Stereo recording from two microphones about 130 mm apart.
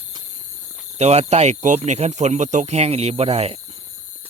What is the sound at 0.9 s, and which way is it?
Speech, 55° right (ahead or behind).